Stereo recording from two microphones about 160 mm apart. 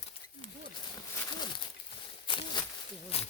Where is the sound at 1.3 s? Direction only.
30° left (ahead or behind).